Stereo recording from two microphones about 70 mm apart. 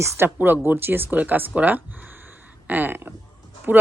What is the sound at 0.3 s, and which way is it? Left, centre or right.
Speech, right.